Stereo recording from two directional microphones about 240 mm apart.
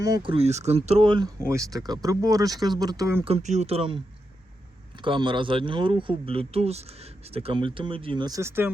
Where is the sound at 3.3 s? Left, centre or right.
Right.